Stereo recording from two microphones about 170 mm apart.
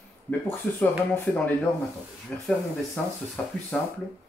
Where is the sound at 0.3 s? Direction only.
10° left (ahead or behind).